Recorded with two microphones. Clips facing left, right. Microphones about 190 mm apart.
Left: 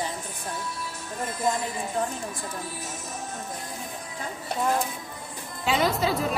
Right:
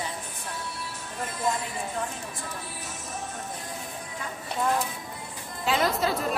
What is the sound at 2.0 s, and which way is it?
Speech, 35° left (ahead or behind).